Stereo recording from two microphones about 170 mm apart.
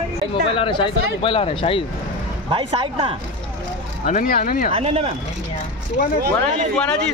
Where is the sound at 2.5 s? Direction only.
30° right (ahead or behind).